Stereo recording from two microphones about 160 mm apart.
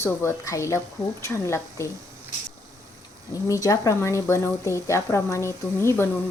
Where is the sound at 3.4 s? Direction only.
20° left (ahead or behind).